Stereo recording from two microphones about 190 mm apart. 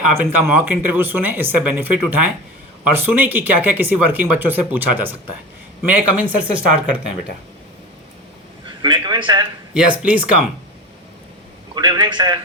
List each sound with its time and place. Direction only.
0.2 s speech: 10° right (ahead or behind)
8.8 s a man's voice: 25° right (ahead or behind)
9.7 s speech: 5° right (ahead or behind)
11.7 s a man's voice: 25° right (ahead or behind)